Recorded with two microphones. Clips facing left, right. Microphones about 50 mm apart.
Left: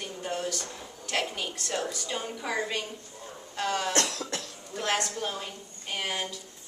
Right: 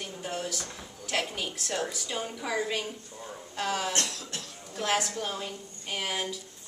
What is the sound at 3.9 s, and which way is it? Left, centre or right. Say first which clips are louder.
Cough: left 4 dB; left.